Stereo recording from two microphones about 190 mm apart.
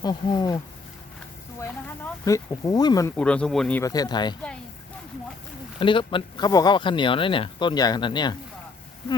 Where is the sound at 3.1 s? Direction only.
5° left (ahead or behind).